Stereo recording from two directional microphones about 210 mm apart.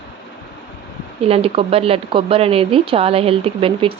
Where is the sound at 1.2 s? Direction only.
25° right (ahead or behind).